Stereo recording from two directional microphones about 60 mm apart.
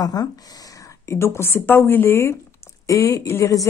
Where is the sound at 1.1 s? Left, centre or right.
Left.